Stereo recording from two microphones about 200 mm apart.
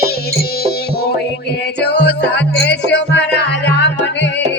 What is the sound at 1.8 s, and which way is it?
Music, 55° left (ahead or behind).